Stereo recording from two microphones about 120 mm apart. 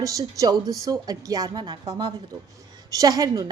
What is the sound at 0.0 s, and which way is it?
A woman's voice, 30° right (ahead or behind).